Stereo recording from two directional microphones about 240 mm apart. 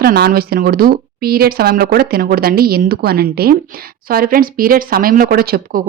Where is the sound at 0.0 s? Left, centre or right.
Right.